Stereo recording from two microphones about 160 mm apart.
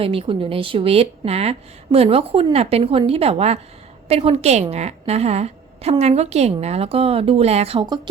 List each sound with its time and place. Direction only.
0.0 s a woman's voice: 35° right (ahead or behind)